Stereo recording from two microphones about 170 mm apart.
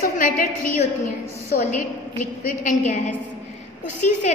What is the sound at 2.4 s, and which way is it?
Speech, 50° left (ahead or behind).